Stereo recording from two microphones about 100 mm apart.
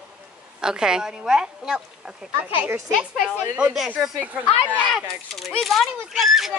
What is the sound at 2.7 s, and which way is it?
Speech, 30° right (ahead or behind).